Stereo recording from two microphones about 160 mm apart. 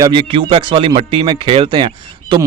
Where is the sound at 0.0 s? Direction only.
30° right (ahead or behind).